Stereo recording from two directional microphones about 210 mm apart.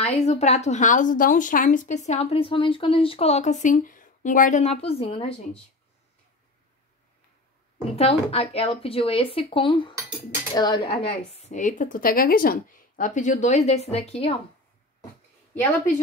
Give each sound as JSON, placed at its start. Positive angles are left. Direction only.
{"t": 0.0, "sound": "speech", "side_deg": 30}
{"t": 7.9, "sound": "speech", "side_deg": 30}